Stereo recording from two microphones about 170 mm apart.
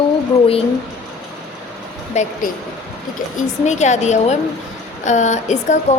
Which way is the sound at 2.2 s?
40° left (ahead or behind).